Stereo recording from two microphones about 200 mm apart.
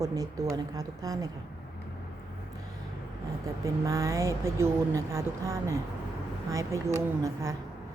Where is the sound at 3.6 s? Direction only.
15° right (ahead or behind).